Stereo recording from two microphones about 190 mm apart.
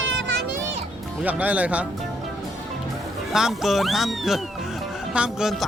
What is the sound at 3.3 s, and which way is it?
Speech, centre (ahead or behind).